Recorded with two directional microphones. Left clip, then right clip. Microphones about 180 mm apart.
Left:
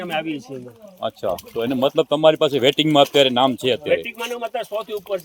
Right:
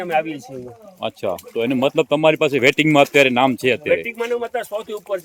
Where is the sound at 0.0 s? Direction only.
25° right (ahead or behind).